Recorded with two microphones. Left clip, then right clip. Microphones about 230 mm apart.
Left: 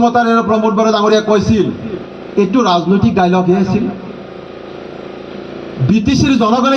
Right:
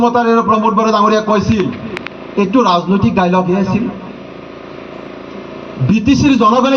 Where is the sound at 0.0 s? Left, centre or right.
Left.